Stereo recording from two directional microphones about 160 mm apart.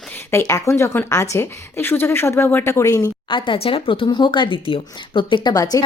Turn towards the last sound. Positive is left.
turn(degrees=25)  # may be behind; listen again after turning